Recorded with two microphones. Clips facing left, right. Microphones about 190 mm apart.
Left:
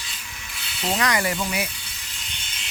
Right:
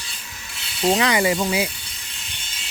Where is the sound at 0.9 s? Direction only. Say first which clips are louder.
Right 3 dB; 25° right (ahead or behind).